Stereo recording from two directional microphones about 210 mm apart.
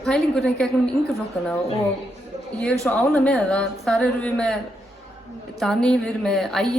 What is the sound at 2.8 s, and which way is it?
A woman's voice, 5° left (ahead or behind).